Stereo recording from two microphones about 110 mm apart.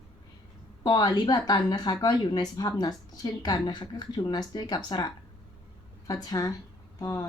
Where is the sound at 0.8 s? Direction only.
40° left (ahead or behind).